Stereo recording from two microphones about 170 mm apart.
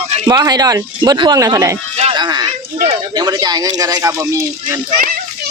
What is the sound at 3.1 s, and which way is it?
Speech, 25° right (ahead or behind).